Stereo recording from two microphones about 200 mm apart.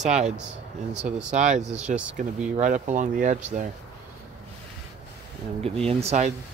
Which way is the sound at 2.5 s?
35° right (ahead or behind).